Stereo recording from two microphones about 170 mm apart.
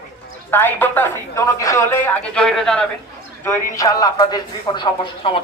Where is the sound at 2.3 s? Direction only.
5° left (ahead or behind).